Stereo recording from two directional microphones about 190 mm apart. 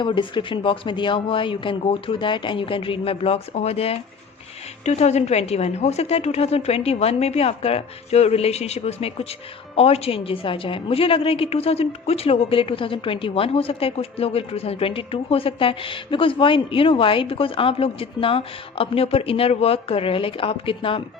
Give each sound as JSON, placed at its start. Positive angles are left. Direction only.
{"t": 0.0, "sound": "a woman's voice", "side_deg": 25}